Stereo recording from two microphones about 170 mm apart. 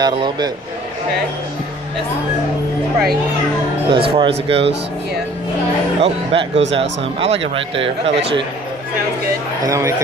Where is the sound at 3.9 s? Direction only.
30° right (ahead or behind).